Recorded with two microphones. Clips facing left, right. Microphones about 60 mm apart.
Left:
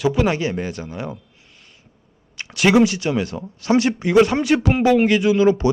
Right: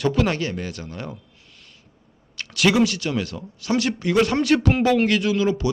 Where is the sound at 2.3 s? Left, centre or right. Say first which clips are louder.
Left 2 dB; left.